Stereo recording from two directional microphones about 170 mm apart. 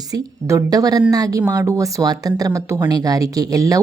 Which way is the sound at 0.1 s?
20° right (ahead or behind).